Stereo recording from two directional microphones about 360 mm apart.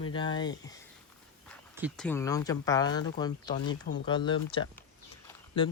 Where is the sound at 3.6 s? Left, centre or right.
Left.